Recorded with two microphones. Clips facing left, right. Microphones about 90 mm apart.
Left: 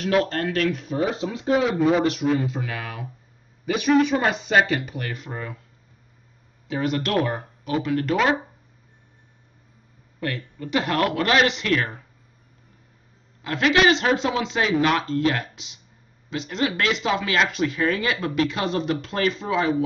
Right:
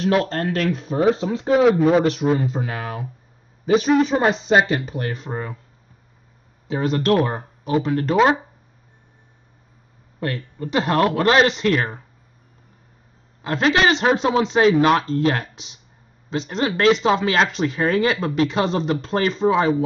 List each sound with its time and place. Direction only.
0.0 s speech: 30° right (ahead or behind)
6.7 s speech: 35° right (ahead or behind)
10.2 s speech: 30° right (ahead or behind)
13.4 s speech: 30° right (ahead or behind)